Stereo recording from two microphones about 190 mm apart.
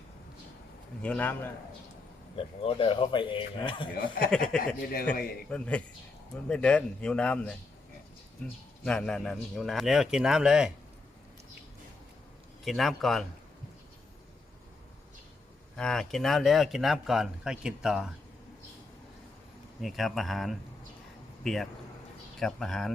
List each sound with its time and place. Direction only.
1.0 s a man's voice: 5° left (ahead or behind)
2.6 s speech: 25° left (ahead or behind)
4.3 s speech: 5° left (ahead or behind)
4.8 s a man's voice: 50° left (ahead or behind)
5.5 s speech: 5° left (ahead or behind)
8.8 s speech: 5° left (ahead or behind)
12.6 s speech: centre (ahead or behind)
15.7 s speech: 5° left (ahead or behind)
19.8 s speech: centre (ahead or behind)